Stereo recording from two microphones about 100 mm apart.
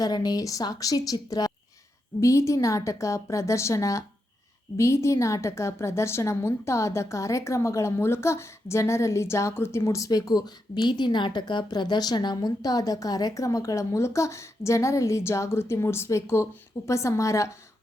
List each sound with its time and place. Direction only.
0.0 s a woman's voice: 40° left (ahead or behind)